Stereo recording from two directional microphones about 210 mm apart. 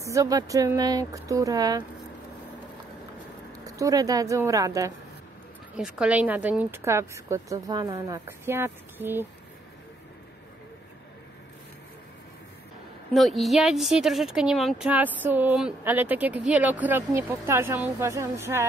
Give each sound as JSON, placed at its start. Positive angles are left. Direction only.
{"t": 0.0, "sound": "speech", "side_deg": -15}
{"t": 3.6, "sound": "speech", "side_deg": -15}
{"t": 5.8, "sound": "speech", "side_deg": -5}
{"t": 13.1, "sound": "speech", "side_deg": 0}